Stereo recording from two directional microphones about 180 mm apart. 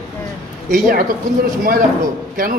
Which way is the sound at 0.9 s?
50° right (ahead or behind).